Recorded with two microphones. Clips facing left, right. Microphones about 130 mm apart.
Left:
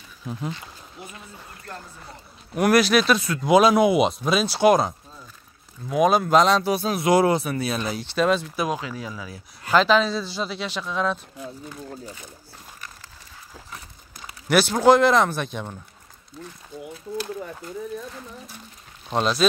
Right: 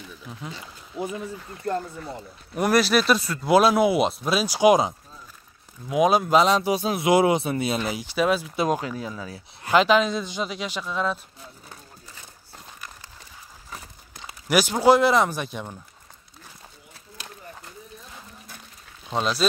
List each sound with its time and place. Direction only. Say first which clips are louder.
2.5 s speech: left 2 dB; centre (ahead or behind)
8.6 s speech: right 3 dB; 45° right (ahead or behind)
8.9 s speech: right 1 dB; 25° right (ahead or behind); by 11.1 s 5° right (ahead or behind)
14.5 s speech: left 1 dB; 10° right (ahead or behind)